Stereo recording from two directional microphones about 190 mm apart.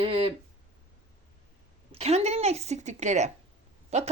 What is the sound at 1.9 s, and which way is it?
Speech, 35° right (ahead or behind).